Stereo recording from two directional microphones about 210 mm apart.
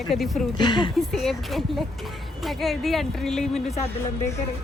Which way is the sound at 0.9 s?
Centre (ahead or behind).